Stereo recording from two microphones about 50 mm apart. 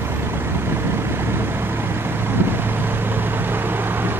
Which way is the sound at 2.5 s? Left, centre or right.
Right.